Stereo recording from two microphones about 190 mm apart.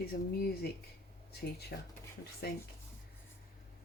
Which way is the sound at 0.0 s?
55° left (ahead or behind).